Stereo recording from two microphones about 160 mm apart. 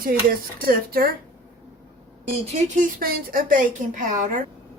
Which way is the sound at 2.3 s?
45° right (ahead or behind).